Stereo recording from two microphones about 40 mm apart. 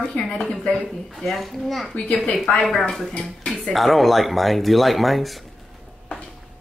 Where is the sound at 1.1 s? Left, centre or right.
Centre.